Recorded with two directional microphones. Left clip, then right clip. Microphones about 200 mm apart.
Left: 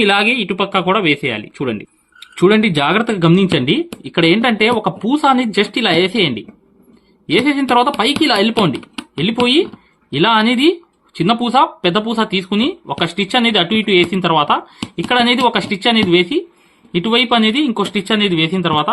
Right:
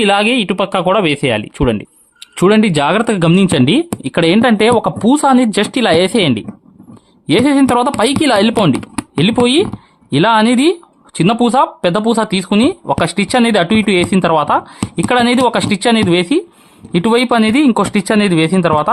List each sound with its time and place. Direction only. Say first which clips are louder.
0.0 s speech: right 1 dB; 50° right (ahead or behind)
10.2 s speech: right 2 dB; 50° right (ahead or behind)